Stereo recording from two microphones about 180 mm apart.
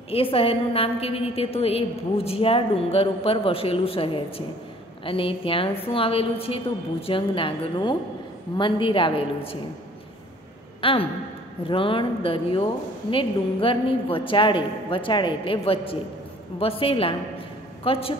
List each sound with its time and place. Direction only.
0.1 s a woman's voice: 30° left (ahead or behind)
10.8 s a man's voice: 30° left (ahead or behind)